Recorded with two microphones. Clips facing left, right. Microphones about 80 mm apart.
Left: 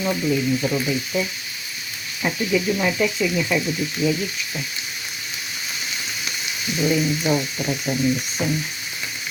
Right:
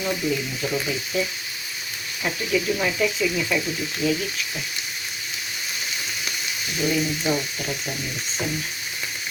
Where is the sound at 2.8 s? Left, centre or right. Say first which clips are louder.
Left 2 dB; centre.